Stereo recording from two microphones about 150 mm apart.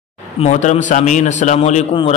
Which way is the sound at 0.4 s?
50° left (ahead or behind).